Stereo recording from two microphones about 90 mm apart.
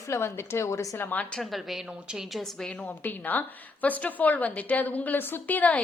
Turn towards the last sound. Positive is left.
turn(degrees=20)  # may be behind; listen again after turning